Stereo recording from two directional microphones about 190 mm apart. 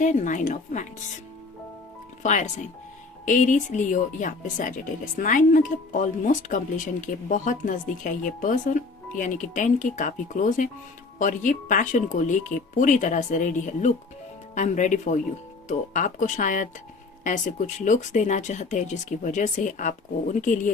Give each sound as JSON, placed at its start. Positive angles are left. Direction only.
{"t": 0.0, "sound": "speech", "side_deg": 40}
{"t": 2.2, "sound": "speech", "side_deg": 40}